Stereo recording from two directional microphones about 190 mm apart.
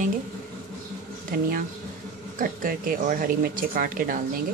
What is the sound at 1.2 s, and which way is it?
Speech, 50° right (ahead or behind).